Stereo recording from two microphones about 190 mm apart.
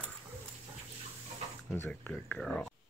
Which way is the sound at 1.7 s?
5° left (ahead or behind).